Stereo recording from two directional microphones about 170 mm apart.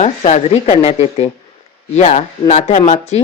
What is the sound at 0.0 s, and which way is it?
Speech, 40° left (ahead or behind).